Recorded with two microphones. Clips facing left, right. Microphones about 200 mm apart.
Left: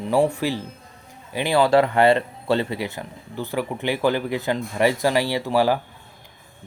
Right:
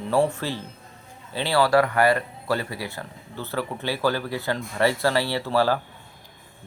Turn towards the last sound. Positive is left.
turn(degrees=15)  # may be behind; listen again after turning